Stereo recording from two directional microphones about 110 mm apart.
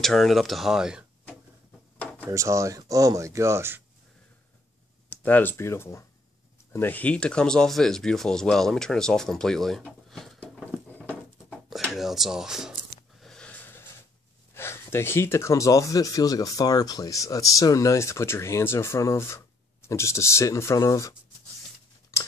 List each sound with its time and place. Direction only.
0.0 s speech: centre (ahead or behind)
2.3 s speech: 25° right (ahead or behind)
5.1 s speech: 15° left (ahead or behind)
11.9 s speech: centre (ahead or behind)
13.2 s a sound: 5° left (ahead or behind)
14.5 s speech: 20° left (ahead or behind)
22.1 s a sound: 25° left (ahead or behind)